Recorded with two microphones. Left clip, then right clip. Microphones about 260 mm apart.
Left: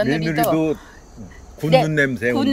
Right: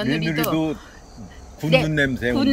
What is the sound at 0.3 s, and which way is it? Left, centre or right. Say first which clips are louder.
Speech: left 5 dB; left.